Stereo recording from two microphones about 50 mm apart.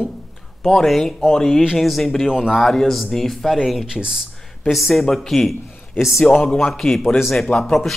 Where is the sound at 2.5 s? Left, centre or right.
Centre.